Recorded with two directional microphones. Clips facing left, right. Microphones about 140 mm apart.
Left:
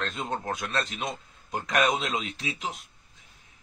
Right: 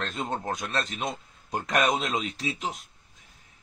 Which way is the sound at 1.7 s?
5° right (ahead or behind).